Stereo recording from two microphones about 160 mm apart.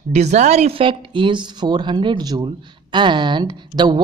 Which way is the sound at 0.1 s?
45° right (ahead or behind).